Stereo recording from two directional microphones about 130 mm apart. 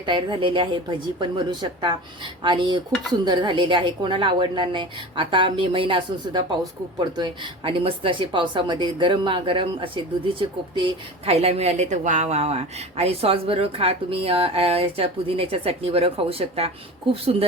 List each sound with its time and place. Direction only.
0.0 s a woman's voice: 40° right (ahead or behind)
2.9 s dishes: centre (ahead or behind)
3.2 s a woman's voice: 40° right (ahead or behind)